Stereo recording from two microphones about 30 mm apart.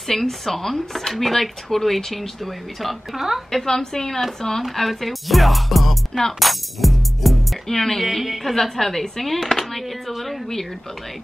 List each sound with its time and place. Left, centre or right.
0.1 s speech: centre
3.2 s a woman's voice: centre
3.6 s speech: centre
4.7 s speech: centre
6.4 s music: centre
7.6 s speech: centre
8.0 s speech: centre
8.5 s speech: centre